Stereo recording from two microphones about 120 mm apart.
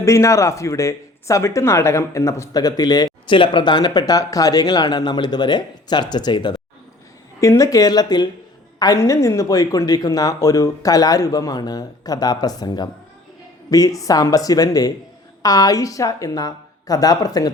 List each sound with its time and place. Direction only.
0.0 s speech: 25° left (ahead or behind)
7.3 s speech: 25° left (ahead or behind)